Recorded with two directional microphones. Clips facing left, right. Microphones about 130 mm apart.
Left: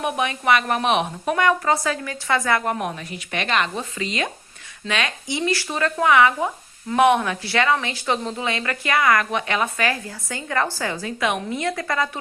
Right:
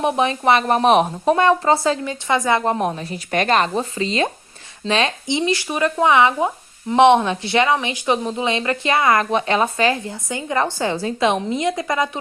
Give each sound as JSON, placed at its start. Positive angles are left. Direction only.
{"t": 0.0, "sound": "a woman's voice", "side_deg": -30}